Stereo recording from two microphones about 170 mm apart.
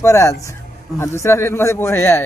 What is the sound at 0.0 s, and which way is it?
A man's voice, 15° left (ahead or behind).